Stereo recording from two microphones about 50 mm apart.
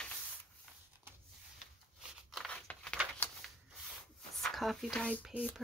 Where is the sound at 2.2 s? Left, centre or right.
Centre.